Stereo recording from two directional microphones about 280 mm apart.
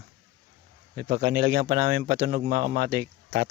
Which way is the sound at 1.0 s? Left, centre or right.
Right.